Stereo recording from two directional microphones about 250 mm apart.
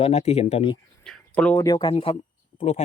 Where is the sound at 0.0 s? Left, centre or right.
Left.